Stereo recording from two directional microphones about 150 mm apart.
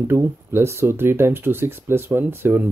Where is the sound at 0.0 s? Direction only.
15° right (ahead or behind).